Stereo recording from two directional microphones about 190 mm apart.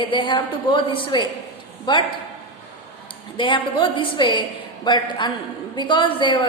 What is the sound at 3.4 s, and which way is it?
A woman's voice, 25° left (ahead or behind).